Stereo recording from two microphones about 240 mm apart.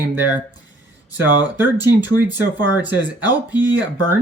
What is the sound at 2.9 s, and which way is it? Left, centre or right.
Speech, centre.